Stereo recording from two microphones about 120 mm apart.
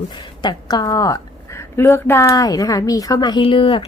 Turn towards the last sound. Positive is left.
turn(degrees=45)  # may be behind; listen again after turning